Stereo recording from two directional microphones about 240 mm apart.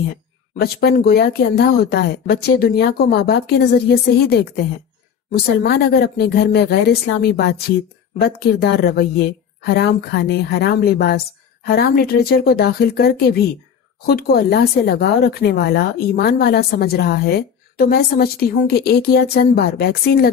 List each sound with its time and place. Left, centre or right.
0.6 s a woman's voice: left